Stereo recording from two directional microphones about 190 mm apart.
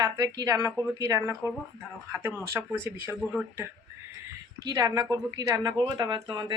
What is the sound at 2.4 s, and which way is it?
Speech, 15° right (ahead or behind).